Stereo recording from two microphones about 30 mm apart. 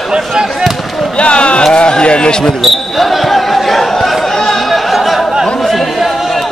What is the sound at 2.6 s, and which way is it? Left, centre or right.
Basketball bounce, centre.